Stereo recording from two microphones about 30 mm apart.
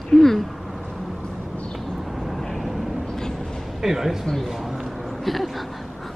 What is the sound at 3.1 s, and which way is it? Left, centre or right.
Vehicle, centre.